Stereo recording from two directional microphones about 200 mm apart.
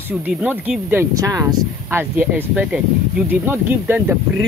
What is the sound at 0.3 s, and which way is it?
Speech, 5° right (ahead or behind).